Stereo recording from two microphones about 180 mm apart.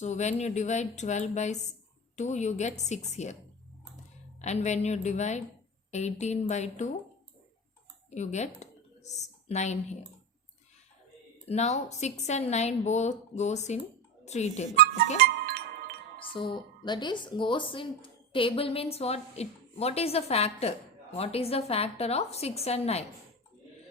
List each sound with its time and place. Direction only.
0.0 s speech: 40° left (ahead or behind)
4.4 s speech: 40° left (ahead or behind)
8.1 s speech: 40° left (ahead or behind)
11.4 s speech: 40° left (ahead or behind)
15.2 s music: 55° right (ahead or behind)
16.2 s speech: 30° left (ahead or behind)